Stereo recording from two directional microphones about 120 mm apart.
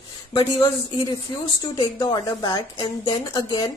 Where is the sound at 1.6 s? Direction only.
35° left (ahead or behind).